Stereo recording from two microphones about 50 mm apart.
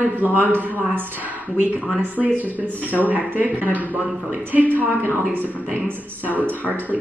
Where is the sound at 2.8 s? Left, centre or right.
Left.